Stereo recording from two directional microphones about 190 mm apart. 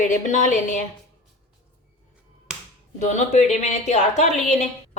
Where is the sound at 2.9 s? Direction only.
40° left (ahead or behind).